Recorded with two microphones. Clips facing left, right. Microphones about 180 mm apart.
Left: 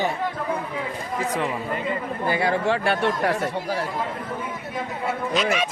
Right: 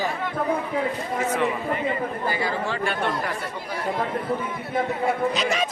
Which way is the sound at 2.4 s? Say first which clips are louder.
Left 4 dB; 65° left (ahead or behind).